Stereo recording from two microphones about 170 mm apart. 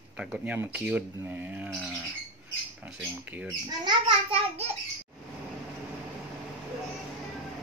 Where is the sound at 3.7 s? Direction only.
25° right (ahead or behind).